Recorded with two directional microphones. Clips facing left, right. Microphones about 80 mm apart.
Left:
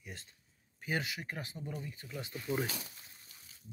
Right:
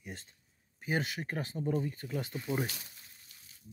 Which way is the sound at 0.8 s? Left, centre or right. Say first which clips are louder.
Right 3 dB; right.